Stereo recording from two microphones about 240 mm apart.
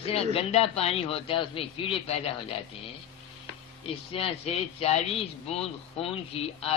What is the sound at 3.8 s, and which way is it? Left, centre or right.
Speech, left.